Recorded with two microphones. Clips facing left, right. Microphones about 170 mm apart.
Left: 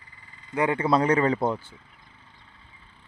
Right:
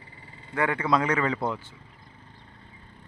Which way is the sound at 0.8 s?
30° left (ahead or behind).